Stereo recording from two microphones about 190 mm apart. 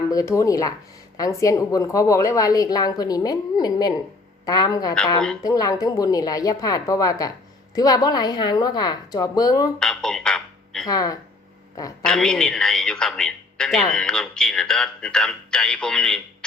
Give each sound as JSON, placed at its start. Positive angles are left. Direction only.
{"t": 0.1, "sound": "a woman's voice", "side_deg": 15}
{"t": 9.7, "sound": "a sound", "side_deg": 0}
{"t": 10.8, "sound": "a woman's voice", "side_deg": 20}
{"t": 12.0, "sound": "a man's voice", "side_deg": 5}